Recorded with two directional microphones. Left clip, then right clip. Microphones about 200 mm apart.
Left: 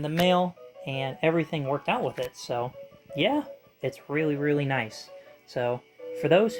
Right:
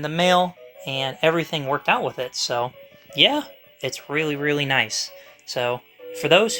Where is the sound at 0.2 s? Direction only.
35° right (ahead or behind).